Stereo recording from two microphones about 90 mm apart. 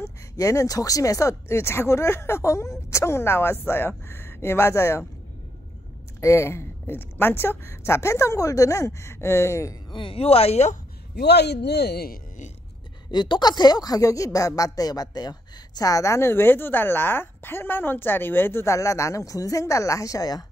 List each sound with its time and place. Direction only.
0.0 s speech: 40° left (ahead or behind)
6.2 s speech: 30° left (ahead or behind)
9.8 s speech: 70° left (ahead or behind); by 10.5 s 90° left
13.1 s speech: 55° left (ahead or behind)